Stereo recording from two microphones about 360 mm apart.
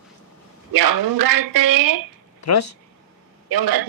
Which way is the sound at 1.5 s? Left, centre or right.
Right.